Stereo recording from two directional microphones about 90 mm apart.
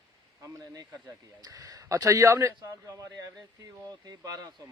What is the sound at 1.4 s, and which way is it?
Speech, 45° right (ahead or behind).